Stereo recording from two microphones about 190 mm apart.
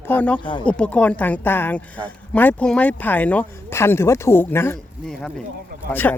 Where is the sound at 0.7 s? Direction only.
5° left (ahead or behind).